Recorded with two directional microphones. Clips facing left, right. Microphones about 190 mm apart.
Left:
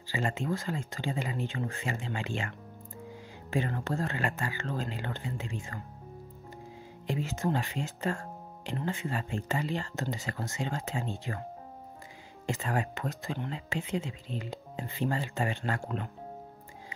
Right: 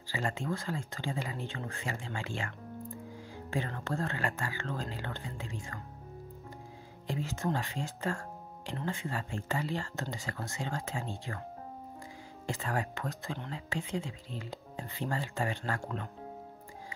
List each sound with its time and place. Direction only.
0.1 s speech: 20° left (ahead or behind)
3.5 s speech: 15° left (ahead or behind)
7.1 s speech: 20° left (ahead or behind)
12.4 s speech: 20° left (ahead or behind)